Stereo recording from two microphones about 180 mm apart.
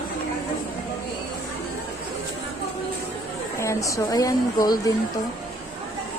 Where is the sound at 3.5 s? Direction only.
15° left (ahead or behind).